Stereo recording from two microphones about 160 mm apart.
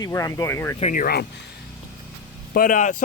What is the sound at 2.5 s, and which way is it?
Speech, 55° left (ahead or behind).